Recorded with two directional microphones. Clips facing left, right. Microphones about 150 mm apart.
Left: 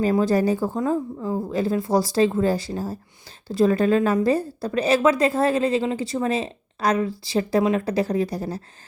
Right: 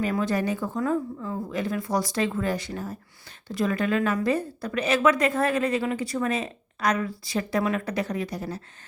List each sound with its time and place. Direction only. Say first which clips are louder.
0.0 s a woman's voice: left 6 dB; 35° left (ahead or behind)